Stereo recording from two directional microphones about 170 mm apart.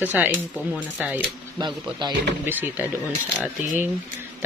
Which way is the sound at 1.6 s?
25° right (ahead or behind).